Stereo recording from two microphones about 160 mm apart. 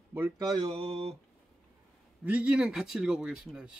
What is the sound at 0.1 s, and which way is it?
Speech, 15° right (ahead or behind).